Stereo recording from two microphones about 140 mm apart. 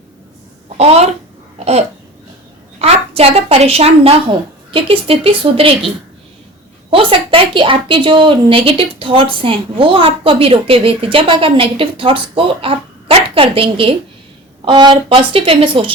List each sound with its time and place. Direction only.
0.8 s a woman's voice: 45° right (ahead or behind)
1.5 s babbling: 50° right (ahead or behind)
2.7 s a woman's voice: 45° right (ahead or behind)
6.9 s speech: 40° right (ahead or behind)